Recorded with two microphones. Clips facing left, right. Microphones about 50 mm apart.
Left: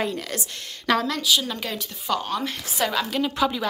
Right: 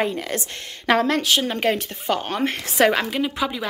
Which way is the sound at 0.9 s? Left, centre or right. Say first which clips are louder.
Right 3 dB; right.